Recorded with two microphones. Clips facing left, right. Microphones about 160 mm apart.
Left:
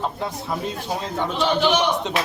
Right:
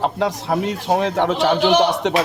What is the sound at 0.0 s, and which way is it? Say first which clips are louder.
Speech: right 7 dB; 80° right.